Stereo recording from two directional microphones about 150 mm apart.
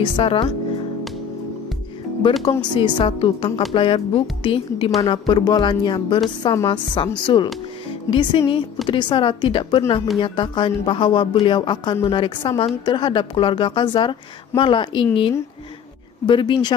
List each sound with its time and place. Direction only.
0.0 s a woman's voice: 35° left (ahead or behind)
2.6 s a woman's voice: 30° left (ahead or behind)
16.3 s a woman's voice: 30° left (ahead or behind)